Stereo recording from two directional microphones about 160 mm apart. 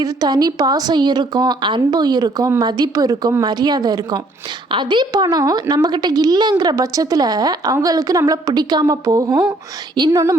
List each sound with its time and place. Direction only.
0.0 s a woman's voice: 25° right (ahead or behind)